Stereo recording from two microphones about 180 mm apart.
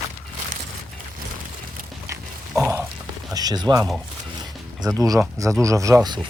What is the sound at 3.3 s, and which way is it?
Speech, 20° right (ahead or behind).